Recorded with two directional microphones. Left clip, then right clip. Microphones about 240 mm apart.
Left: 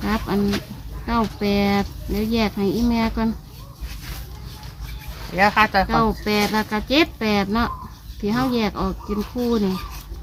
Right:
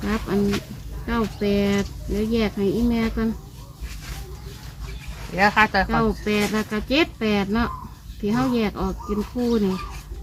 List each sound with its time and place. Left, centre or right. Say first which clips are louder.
0.0 s speech: left 1 dB; left
5.3 s speech: left 1 dB; centre
5.9 s speech: left 2 dB; left